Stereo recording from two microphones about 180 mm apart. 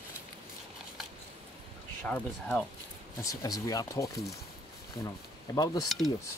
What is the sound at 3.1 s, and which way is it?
Speech, 20° left (ahead or behind).